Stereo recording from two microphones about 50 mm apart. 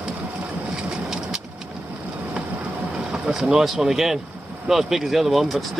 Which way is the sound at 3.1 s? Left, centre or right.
Centre.